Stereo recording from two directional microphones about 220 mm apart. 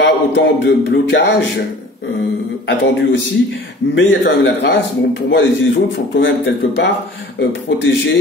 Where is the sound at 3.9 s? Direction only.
55° left (ahead or behind).